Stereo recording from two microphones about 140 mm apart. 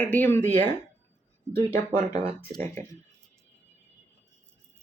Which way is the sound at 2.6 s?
15° left (ahead or behind).